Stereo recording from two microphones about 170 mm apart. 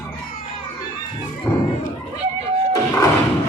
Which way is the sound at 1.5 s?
25° left (ahead or behind).